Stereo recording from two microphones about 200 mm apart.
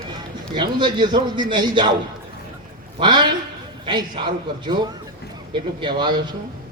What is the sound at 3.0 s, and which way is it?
A man's voice, 25° right (ahead or behind).